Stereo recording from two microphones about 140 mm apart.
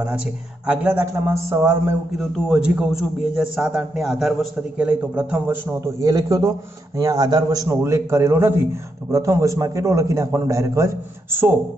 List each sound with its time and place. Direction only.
0.7 s a man's voice: 10° right (ahead or behind)